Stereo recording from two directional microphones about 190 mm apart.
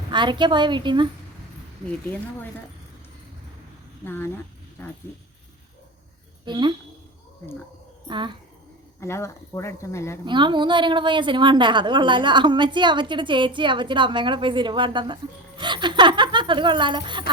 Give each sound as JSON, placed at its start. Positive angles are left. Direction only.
{"t": 0.1, "sound": "a woman's voice", "side_deg": -25}
{"t": 4.0, "sound": "speech", "side_deg": 10}
{"t": 6.4, "sound": "a woman's voice", "side_deg": -25}
{"t": 8.0, "sound": "a woman's voice", "side_deg": -25}
{"t": 9.0, "sound": "speech", "side_deg": 15}
{"t": 10.2, "sound": "a woman's voice", "side_deg": -25}